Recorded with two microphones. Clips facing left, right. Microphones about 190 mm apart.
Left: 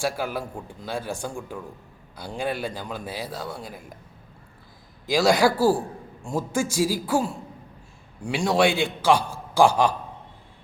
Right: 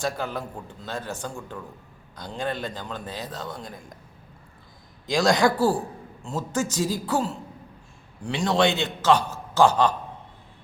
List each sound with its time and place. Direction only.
0.0 s a man's voice: 10° left (ahead or behind)
5.0 s a man's voice: 5° left (ahead or behind)